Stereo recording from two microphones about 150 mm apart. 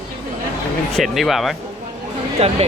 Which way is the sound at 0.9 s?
Centre (ahead or behind).